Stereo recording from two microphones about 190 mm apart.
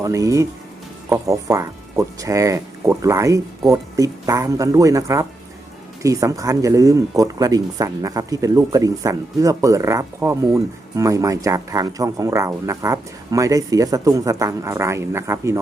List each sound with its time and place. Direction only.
0.0 s speech: 15° right (ahead or behind)